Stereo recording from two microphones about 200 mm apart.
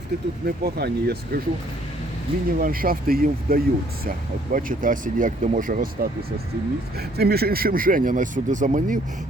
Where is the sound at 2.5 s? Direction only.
45° right (ahead or behind).